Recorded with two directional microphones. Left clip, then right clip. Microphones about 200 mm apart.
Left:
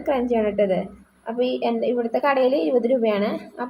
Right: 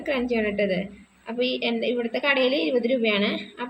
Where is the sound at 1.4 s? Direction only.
30° left (ahead or behind).